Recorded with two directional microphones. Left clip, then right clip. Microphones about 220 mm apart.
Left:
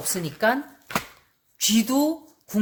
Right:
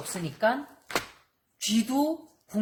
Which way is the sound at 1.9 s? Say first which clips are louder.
Left 3 dB; 40° left (ahead or behind).